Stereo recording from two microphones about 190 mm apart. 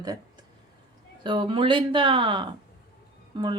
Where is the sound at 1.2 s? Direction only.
25° right (ahead or behind).